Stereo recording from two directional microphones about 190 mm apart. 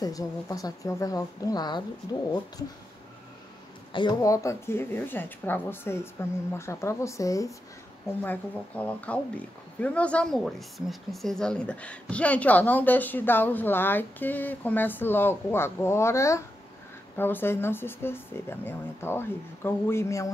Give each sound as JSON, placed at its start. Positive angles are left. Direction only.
{"t": 0.0, "sound": "speech", "side_deg": 20}
{"t": 3.9, "sound": "speech", "side_deg": 20}